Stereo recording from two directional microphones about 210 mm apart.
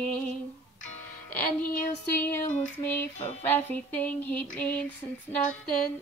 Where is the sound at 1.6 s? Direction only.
45° left (ahead or behind).